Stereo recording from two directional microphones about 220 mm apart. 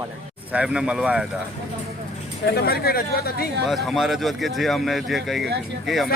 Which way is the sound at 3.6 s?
Centre (ahead or behind).